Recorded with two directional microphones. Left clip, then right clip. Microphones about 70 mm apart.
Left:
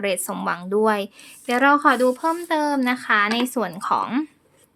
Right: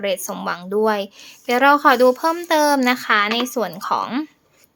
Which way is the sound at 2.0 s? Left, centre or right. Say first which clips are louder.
Right 5 dB; right.